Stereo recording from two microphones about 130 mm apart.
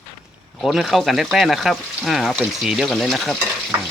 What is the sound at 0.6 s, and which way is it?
A woman's voice, centre (ahead or behind).